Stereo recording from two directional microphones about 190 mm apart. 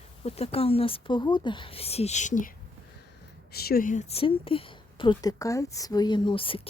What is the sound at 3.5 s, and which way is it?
Speech, 55° left (ahead or behind).